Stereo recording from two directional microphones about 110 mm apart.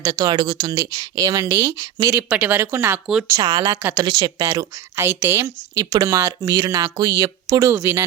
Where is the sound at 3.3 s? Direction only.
45° right (ahead or behind).